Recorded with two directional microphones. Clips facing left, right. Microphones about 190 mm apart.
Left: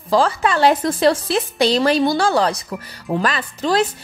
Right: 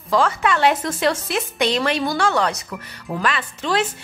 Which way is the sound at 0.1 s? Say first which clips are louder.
Left 2 dB; 35° left (ahead or behind).